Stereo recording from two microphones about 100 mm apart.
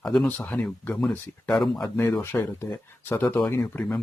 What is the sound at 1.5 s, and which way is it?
Speech, 5° left (ahead or behind).